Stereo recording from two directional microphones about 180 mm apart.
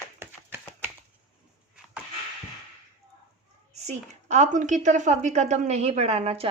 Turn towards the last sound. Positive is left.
turn(degrees=-35)  # may be behind; listen again after turning